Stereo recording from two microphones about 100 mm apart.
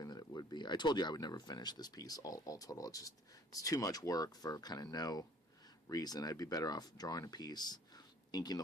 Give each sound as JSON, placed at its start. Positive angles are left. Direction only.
{"t": 0.0, "sound": "speech", "side_deg": 40}